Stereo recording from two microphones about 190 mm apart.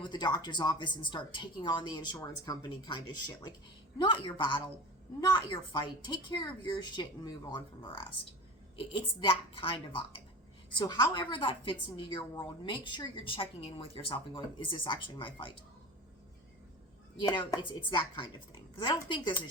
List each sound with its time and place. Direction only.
0.0 s a woman's voice: 25° left (ahead or behind)
17.2 s a woman's voice: 25° left (ahead or behind)